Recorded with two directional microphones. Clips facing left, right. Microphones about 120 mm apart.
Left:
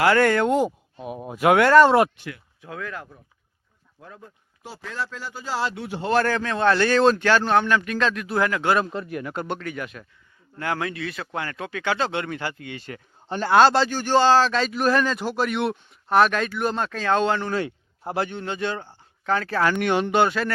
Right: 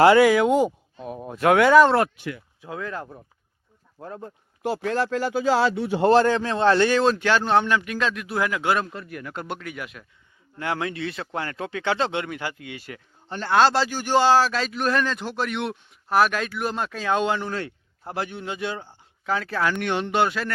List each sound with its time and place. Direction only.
0.2 s speech: 5° right (ahead or behind)
2.2 s a man's voice: 15° right (ahead or behind)
4.0 s speech: 45° right (ahead or behind)
4.6 s speech: 80° right
6.1 s speech: 25° right (ahead or behind)
7.0 s speech: centre (ahead or behind)
7.3 s a man's voice: 20° right (ahead or behind)
8.9 s speech: 25° left (ahead or behind)
9.3 s speech: centre (ahead or behind)
10.6 s speech: 25° right (ahead or behind)
13.2 s speech: 10° left (ahead or behind); by 17.5 s 15° right (ahead or behind)
17.5 s a sound: 10° left (ahead or behind)
18.2 s a man's voice: 5° right (ahead or behind)